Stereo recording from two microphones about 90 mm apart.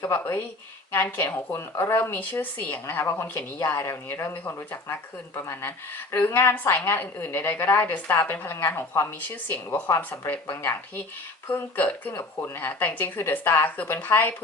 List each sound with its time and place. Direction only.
0.0 s a woman's voice: 25° left (ahead or behind)